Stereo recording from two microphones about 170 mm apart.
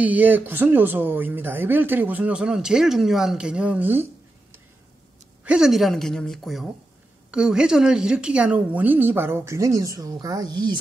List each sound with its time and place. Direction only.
0.0 s speech: 10° right (ahead or behind)
5.4 s speech: 5° right (ahead or behind); by 10.8 s 25° right (ahead or behind)